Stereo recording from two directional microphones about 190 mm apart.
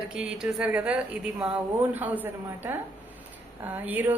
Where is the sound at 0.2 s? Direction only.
5° right (ahead or behind).